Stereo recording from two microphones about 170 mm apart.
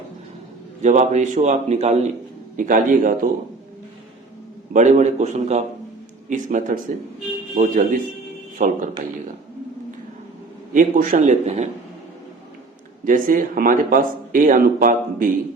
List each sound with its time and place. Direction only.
0.8 s speech: 45° right (ahead or behind)
4.7 s speech: 45° right (ahead or behind)
10.8 s speech: 50° right (ahead or behind)
13.1 s speech: 55° right (ahead or behind)